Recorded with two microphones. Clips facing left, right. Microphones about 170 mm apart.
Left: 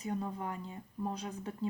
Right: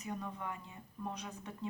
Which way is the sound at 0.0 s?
35° left (ahead or behind).